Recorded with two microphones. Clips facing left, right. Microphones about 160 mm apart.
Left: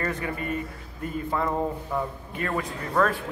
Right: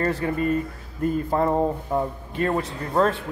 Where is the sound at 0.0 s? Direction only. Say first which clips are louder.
Right 6 dB; 35° right (ahead or behind).